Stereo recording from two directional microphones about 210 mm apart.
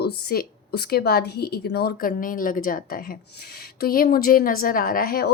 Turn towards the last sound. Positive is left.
turn(degrees=45)  # may be behind; listen again after turning